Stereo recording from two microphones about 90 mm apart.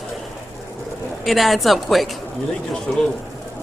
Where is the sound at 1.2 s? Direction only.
Centre (ahead or behind).